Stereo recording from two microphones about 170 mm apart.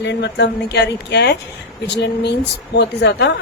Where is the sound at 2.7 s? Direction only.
75° left (ahead or behind).